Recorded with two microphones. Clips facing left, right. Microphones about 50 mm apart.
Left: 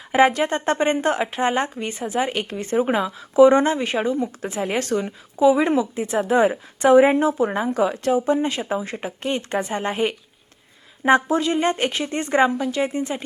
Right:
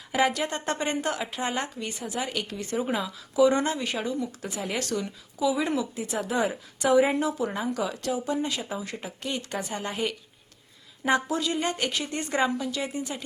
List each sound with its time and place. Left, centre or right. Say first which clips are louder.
0.1 s speech: left 8 dB; left